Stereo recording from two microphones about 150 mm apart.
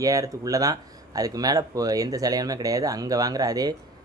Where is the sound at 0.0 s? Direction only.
20° right (ahead or behind).